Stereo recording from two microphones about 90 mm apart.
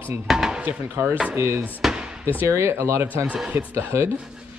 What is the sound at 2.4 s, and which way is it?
Speech, 30° right (ahead or behind).